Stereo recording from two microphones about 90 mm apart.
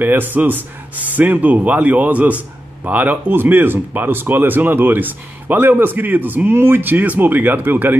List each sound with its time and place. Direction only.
0.0 s speech: 20° right (ahead or behind)